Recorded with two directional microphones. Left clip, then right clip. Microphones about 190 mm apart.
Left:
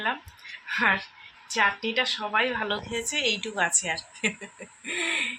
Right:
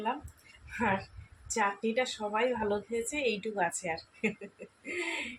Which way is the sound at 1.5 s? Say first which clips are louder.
Left 6 dB; 15° right (ahead or behind).